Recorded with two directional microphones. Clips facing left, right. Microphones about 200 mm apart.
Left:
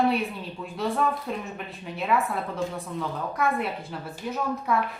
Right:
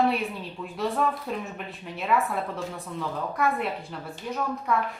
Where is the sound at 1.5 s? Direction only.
Centre (ahead or behind).